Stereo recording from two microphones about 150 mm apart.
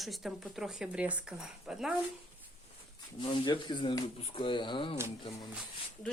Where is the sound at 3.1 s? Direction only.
30° left (ahead or behind).